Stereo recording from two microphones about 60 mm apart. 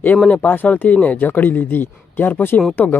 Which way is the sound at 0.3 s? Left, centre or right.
Left.